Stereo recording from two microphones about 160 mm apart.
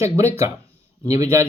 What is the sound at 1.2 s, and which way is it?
Speech, 15° right (ahead or behind).